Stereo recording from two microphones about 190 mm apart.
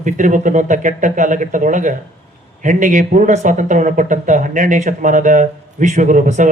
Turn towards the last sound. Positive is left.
turn(degrees=-40)  # may be behind; listen again after turning